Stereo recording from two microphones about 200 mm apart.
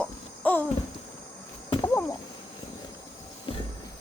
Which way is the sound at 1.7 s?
15° left (ahead or behind).